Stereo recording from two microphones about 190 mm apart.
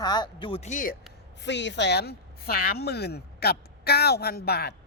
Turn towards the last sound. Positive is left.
turn(degrees=55)  # may be behind; listen again after turning